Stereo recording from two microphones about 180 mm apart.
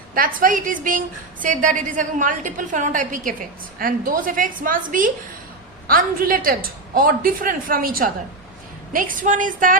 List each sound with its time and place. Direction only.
0.1 s a woman's voice: 50° right (ahead or behind)